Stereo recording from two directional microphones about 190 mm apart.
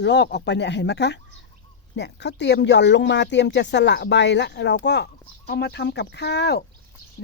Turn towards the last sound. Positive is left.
turn(degrees=60)  # may be behind; listen again after turning